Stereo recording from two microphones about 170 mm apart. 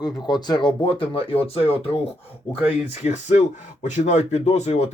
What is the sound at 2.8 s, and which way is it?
Speech, 45° left (ahead or behind).